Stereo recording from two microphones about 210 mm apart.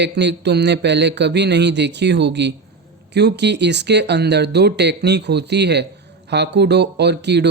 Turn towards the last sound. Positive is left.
turn(degrees=-55)  # may be behind; listen again after turning